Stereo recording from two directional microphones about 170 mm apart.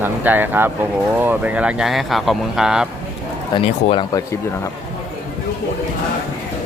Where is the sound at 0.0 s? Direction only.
10° right (ahead or behind).